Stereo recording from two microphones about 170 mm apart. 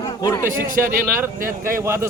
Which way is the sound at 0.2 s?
20° left (ahead or behind).